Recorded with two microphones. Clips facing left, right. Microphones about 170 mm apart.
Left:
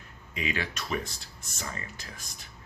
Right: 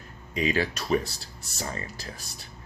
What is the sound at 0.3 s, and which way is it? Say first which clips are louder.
Speech: right 7 dB; 35° right (ahead or behind).